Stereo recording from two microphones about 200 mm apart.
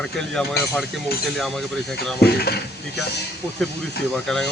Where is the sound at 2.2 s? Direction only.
55° left (ahead or behind).